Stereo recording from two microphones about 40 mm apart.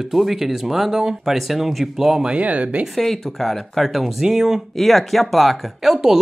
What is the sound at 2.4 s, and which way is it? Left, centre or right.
Speech, right.